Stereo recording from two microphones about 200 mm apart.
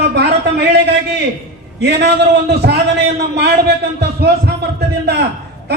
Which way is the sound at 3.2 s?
55° right (ahead or behind).